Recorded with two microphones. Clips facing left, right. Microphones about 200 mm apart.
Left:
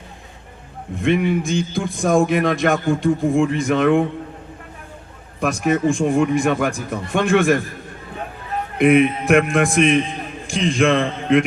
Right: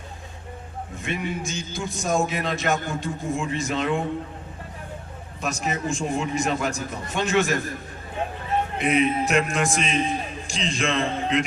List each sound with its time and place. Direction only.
0.9 s a man's voice: 55° left (ahead or behind)
5.4 s a man's voice: 55° left (ahead or behind)
8.8 s a man's voice: 55° left (ahead or behind)